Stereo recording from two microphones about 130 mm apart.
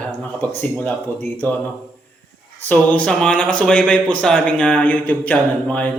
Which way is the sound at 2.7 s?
10° left (ahead or behind).